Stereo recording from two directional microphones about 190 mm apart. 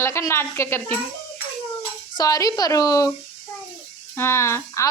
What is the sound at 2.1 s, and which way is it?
Speech, 20° left (ahead or behind).